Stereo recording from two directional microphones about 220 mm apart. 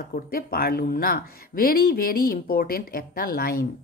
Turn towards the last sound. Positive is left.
turn(degrees=40)  # may be behind; listen again after turning